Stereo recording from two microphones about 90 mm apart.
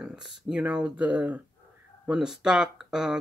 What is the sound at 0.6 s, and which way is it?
Speech, 15° right (ahead or behind).